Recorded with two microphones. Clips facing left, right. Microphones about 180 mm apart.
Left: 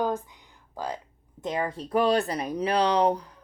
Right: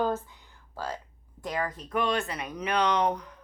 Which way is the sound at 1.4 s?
25° left (ahead or behind).